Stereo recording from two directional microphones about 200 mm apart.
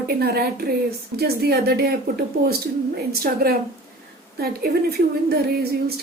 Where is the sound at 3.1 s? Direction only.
50° right (ahead or behind).